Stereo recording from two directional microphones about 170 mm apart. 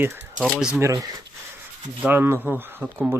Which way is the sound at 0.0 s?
15° right (ahead or behind).